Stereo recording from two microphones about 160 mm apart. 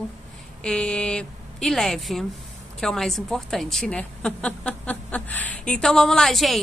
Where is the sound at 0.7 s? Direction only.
5° left (ahead or behind).